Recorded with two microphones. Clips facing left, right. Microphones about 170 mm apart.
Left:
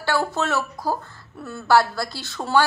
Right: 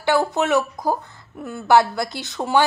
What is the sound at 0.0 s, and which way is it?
Speech, 20° right (ahead or behind).